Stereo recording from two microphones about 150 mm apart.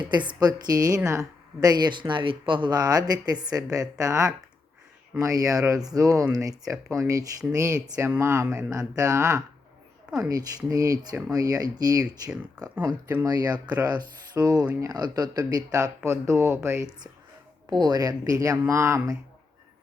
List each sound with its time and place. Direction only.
0.0 s speech: 30° right (ahead or behind)
6.8 s speech: 10° right (ahead or behind)
7.5 s speech: 20° right (ahead or behind)
17.7 s speech: 30° right (ahead or behind)